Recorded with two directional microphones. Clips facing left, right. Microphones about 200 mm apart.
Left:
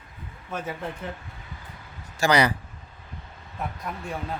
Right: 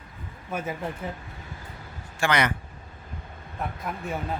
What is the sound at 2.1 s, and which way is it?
Speech, 35° left (ahead or behind).